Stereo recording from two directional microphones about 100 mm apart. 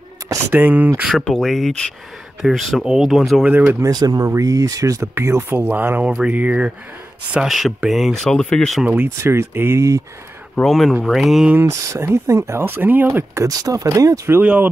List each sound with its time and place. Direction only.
0.5 s speech: 20° right (ahead or behind)
1.0 s speech: centre (ahead or behind)
3.4 s speech: 15° right (ahead or behind)
3.8 s speech: 40° right (ahead or behind); by 6.7 s 15° right (ahead or behind)
7.3 s speech: centre (ahead or behind)
8.8 s speech: 15° right (ahead or behind)
9.2 s speech: 25° right (ahead or behind)
10.5 s speech: centre (ahead or behind)
11.5 s speech: 30° right (ahead or behind)
13.5 s speech: 35° right (ahead or behind)
14.4 s speech: 15° right (ahead or behind)